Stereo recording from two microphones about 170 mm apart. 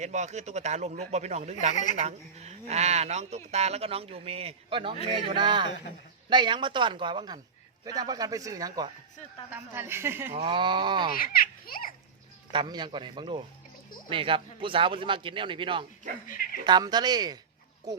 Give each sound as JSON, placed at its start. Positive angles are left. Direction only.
{"t": 0.0, "sound": "speech", "side_deg": -45}
{"t": 1.7, "sound": "speech", "side_deg": 45}
{"t": 2.0, "sound": "a woman's voice", "side_deg": -40}
{"t": 10.3, "sound": "speech", "side_deg": -30}
{"t": 11.2, "sound": "a child's voice", "side_deg": 60}
{"t": 12.5, "sound": "speech", "side_deg": -25}